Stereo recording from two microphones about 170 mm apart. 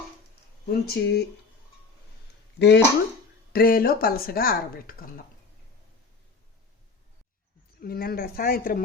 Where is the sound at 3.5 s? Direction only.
60° left (ahead or behind).